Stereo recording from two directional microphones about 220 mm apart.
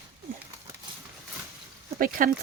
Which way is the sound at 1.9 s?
40° right (ahead or behind).